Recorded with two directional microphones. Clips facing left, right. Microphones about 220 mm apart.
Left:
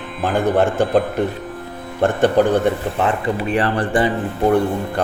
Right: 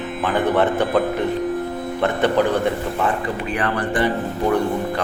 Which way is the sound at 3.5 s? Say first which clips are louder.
Left 4 dB; 30° left (ahead or behind).